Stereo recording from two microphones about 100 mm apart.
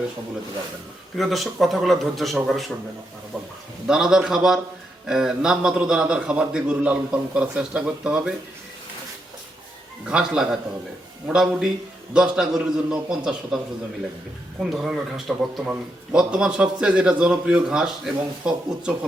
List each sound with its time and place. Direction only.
1.1 s a man's voice: centre (ahead or behind)
3.8 s a man's voice: 5° right (ahead or behind)
10.1 s a man's voice: 5° right (ahead or behind)
14.6 s a man's voice: 5° right (ahead or behind)